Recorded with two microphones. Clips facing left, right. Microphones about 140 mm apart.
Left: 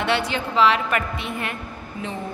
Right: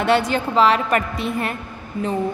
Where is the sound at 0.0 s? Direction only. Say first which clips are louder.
Right 5 dB; 45° right (ahead or behind).